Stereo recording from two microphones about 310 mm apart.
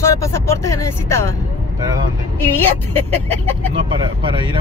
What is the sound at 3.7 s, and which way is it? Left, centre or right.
Speech, centre.